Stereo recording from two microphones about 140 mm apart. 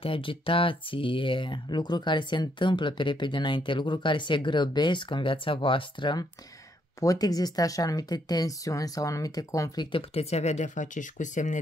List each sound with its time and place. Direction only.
0.0 s speech: 40° left (ahead or behind)
9.8 s speech: 40° left (ahead or behind); by 11.6 s 60° left (ahead or behind)